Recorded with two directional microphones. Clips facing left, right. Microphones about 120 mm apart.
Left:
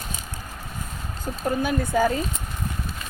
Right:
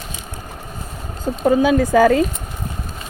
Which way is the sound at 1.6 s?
90° right.